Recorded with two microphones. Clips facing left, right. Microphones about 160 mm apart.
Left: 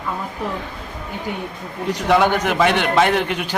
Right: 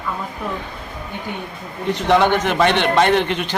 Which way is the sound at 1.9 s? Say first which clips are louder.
Right 1 dB; 10° left (ahead or behind).